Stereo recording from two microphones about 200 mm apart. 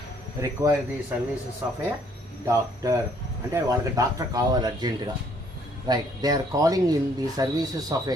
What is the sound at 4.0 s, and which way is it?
Speech, 15° right (ahead or behind).